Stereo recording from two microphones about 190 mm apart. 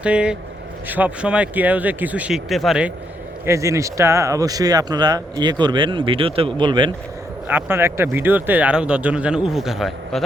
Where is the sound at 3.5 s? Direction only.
15° right (ahead or behind).